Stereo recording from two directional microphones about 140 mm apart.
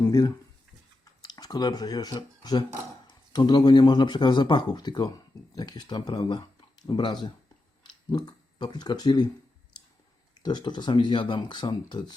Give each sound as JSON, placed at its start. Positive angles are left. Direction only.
{"t": 0.0, "sound": "speech", "side_deg": 20}
{"t": 10.4, "sound": "speech", "side_deg": 30}